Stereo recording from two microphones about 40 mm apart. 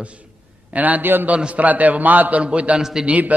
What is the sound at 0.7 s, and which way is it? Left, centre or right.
Speech, right.